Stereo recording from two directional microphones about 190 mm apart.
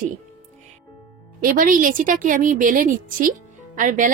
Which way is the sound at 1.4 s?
45° right (ahead or behind).